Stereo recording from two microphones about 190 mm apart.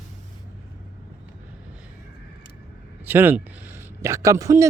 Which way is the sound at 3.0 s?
10° right (ahead or behind).